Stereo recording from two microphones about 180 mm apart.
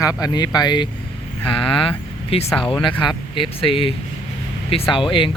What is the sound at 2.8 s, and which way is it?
Speech, 25° left (ahead or behind).